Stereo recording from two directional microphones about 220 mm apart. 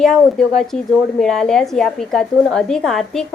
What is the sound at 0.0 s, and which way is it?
A woman's voice, centre (ahead or behind).